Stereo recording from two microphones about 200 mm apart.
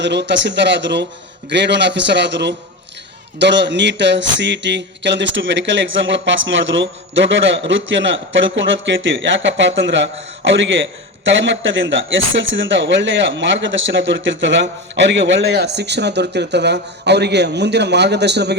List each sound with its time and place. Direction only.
0.0 s speech: 60° right (ahead or behind)